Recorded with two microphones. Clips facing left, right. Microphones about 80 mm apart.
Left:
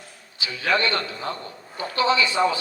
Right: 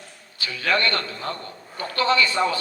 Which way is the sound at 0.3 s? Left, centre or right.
Right.